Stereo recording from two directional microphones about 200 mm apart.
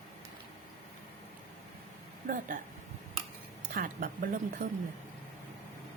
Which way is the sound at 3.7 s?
45° right (ahead or behind).